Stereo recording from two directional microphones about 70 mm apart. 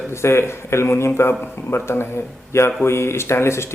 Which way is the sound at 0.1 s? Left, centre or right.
Left.